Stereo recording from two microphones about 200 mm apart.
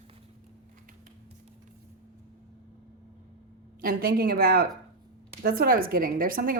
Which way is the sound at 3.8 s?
50° right (ahead or behind).